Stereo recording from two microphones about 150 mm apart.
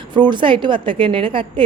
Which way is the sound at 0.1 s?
30° right (ahead or behind).